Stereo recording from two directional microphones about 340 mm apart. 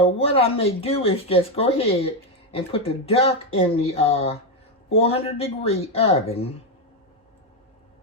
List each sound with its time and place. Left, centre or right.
0.2 s speech: centre